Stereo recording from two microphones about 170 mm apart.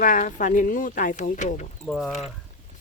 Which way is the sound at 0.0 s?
50° left (ahead or behind).